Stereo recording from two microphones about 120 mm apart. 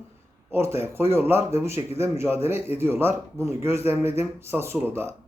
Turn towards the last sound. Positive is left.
turn(degrees=-20)  # may be behind; listen again after turning